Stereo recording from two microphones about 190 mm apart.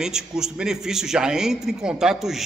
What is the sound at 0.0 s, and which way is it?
A man's voice, 5° right (ahead or behind).